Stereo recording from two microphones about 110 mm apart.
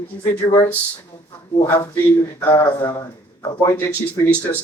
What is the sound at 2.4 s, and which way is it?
A man's voice, 25° left (ahead or behind).